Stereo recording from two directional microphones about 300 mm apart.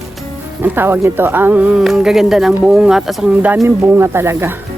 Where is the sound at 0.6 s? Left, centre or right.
Centre.